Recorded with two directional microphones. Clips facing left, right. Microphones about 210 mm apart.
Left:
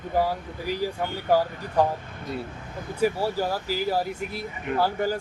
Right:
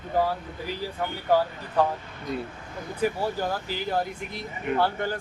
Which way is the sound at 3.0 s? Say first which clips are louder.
Left 2 dB; 10° left (ahead or behind).